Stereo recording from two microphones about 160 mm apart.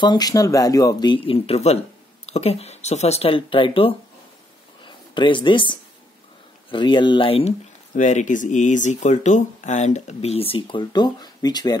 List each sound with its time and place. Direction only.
0.0 s speech: 25° left (ahead or behind)
4.8 s a sound: 30° left (ahead or behind)
6.7 s speech: 30° left (ahead or behind)
7.9 s speech: 50° left (ahead or behind); by 11.7 s 25° left (ahead or behind)